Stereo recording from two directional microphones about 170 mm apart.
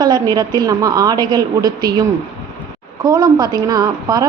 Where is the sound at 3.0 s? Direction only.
25° right (ahead or behind).